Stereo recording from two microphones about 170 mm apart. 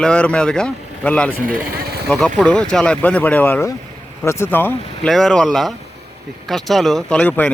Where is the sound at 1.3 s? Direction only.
60° right (ahead or behind).